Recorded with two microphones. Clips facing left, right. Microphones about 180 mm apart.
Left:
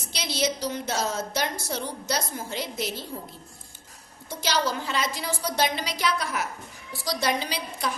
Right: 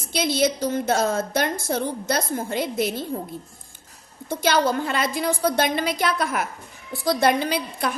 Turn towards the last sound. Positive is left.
turn(degrees=-55)  # may be behind; listen again after turning